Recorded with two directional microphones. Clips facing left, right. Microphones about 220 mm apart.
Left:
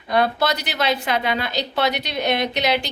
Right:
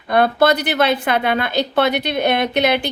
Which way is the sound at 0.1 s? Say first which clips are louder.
Right 5 dB; 55° right (ahead or behind).